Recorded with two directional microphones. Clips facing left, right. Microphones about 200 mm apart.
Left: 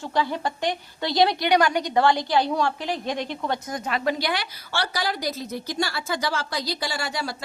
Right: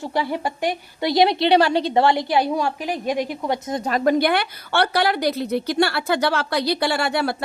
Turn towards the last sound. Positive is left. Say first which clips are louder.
# right 8 dB
turn(degrees=-60)  # may be behind; listen again after turning